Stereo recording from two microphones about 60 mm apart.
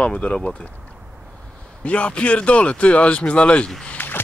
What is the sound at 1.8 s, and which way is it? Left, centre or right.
Speech, left.